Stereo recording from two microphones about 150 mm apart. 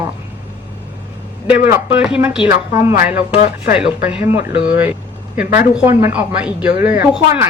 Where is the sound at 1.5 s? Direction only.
15° right (ahead or behind).